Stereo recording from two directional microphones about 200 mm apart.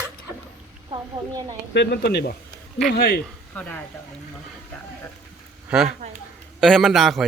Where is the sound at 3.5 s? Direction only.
5° left (ahead or behind).